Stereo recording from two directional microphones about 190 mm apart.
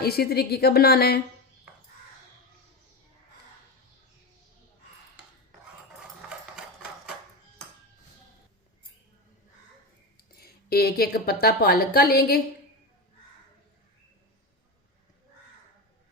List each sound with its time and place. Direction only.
0.0 s a woman's voice: 55° left (ahead or behind)
10.4 s a woman's voice: 55° left (ahead or behind)